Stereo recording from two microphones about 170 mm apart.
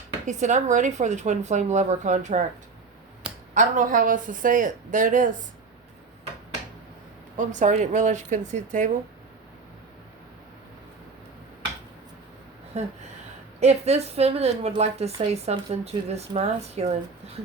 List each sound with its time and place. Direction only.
0.3 s a woman's voice: 45° right (ahead or behind)
3.5 s a woman's voice: 50° right (ahead or behind)
7.3 s a woman's voice: 45° right (ahead or behind)
13.6 s a woman's voice: 40° right (ahead or behind)